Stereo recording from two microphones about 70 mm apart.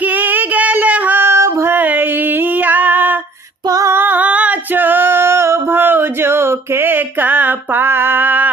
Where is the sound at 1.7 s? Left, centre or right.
Right.